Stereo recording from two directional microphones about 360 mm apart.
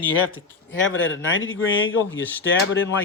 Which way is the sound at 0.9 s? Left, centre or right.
Left.